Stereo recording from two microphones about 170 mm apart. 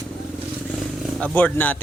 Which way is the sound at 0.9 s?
10° left (ahead or behind).